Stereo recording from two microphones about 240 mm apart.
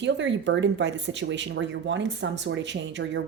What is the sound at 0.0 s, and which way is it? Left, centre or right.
Speech, right.